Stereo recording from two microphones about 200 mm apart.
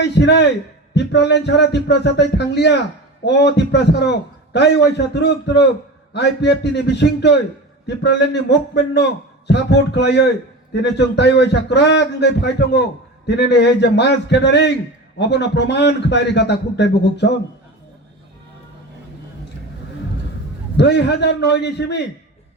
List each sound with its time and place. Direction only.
0.0 s a man's voice: 60° left (ahead or behind)
20.7 s a man's voice: 60° left (ahead or behind)